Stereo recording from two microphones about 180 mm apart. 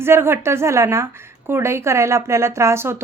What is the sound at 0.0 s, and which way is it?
A woman's voice, 15° right (ahead or behind).